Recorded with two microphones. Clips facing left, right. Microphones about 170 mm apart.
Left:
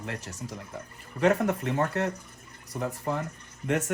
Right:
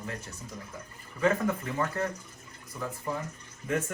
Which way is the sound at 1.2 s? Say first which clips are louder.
Left 3 dB; 75° left (ahead or behind).